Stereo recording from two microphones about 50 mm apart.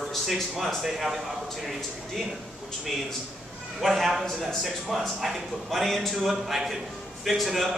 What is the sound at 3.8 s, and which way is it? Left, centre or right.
Speech, centre.